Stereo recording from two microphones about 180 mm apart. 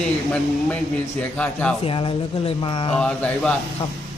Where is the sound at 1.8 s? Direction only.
30° left (ahead or behind).